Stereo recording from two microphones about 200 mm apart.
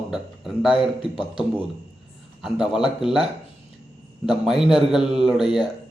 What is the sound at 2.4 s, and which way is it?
Speech, centre (ahead or behind).